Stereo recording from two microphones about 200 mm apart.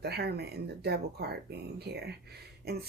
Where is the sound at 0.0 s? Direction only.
55° right (ahead or behind).